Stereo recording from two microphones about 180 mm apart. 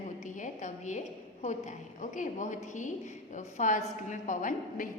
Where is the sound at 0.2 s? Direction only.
45° left (ahead or behind).